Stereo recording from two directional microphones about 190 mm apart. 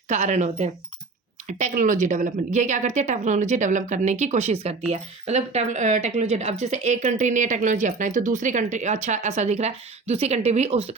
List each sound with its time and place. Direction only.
0.1 s speech: 40° right (ahead or behind)